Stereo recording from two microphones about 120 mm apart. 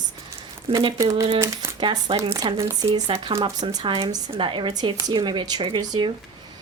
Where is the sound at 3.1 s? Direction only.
50° right (ahead or behind).